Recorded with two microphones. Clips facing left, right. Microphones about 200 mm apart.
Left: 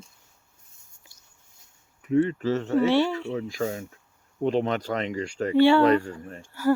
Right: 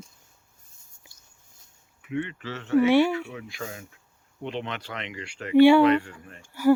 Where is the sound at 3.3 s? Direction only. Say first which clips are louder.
Left 9 dB; 35° left (ahead or behind).